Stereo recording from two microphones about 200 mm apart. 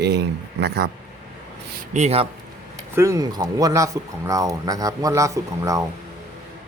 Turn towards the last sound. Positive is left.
turn(degrees=-15)  # may be behind; listen again after turning